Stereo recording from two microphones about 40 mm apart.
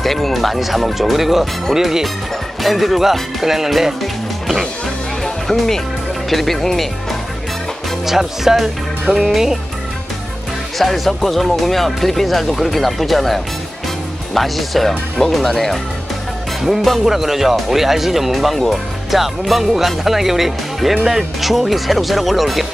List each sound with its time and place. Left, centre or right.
0.0 s speech: centre
5.2 s music: centre
6.3 s speech: centre
8.0 s music: centre
10.8 s speech: centre